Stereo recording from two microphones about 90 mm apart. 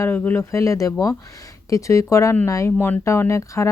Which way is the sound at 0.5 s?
35° left (ahead or behind).